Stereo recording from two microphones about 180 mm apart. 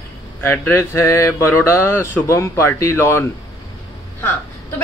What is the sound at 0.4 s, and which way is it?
A woman's voice, 10° left (ahead or behind).